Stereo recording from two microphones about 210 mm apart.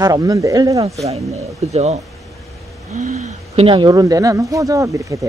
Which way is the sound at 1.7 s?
30° right (ahead or behind).